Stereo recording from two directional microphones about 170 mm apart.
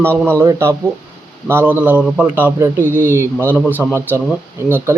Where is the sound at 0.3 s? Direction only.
15° right (ahead or behind).